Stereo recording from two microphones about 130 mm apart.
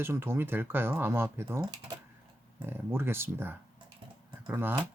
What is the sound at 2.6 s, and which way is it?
Speech, 15° right (ahead or behind).